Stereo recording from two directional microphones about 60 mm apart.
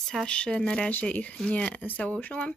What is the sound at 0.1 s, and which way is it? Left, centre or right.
Speech, centre.